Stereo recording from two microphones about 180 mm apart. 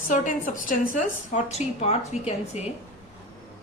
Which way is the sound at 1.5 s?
35° left (ahead or behind).